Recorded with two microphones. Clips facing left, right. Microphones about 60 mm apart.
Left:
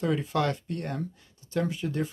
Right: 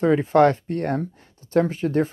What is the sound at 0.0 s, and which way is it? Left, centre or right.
Speech, right.